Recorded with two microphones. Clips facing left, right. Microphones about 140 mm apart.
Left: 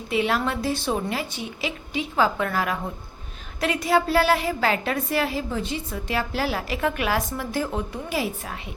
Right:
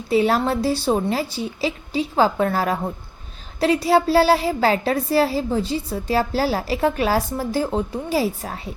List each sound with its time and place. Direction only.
0.1 s a woman's voice: 35° right (ahead or behind)